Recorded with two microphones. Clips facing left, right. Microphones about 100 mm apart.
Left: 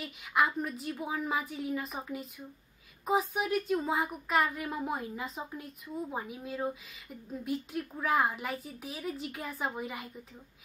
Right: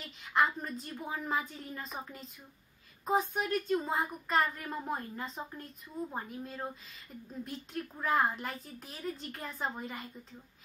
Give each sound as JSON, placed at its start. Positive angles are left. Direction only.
{"t": 0.0, "sound": "a woman's voice", "side_deg": 5}